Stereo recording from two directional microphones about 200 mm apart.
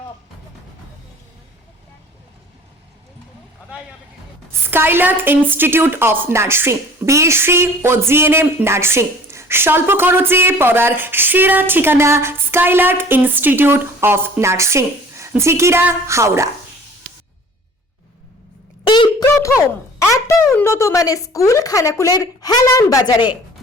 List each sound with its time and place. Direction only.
4.7 s a woman's voice: 10° right (ahead or behind)
18.9 s a sound: 25° left (ahead or behind)
20.0 s a woman's voice: 15° left (ahead or behind)